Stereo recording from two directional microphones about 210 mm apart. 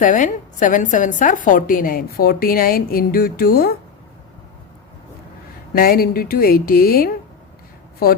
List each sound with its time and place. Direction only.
0.0 s a woman's voice: 40° left (ahead or behind)
5.7 s a woman's voice: 45° left (ahead or behind)